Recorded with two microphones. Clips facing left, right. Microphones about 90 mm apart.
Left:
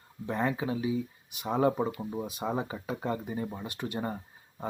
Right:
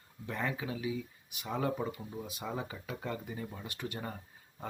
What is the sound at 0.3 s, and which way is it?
Speech, 30° left (ahead or behind).